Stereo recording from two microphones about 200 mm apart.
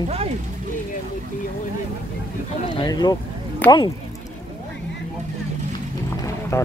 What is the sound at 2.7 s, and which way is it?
Speech, 20° left (ahead or behind).